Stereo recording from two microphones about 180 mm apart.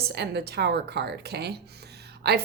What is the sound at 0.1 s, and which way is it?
A woman's voice, 65° right (ahead or behind).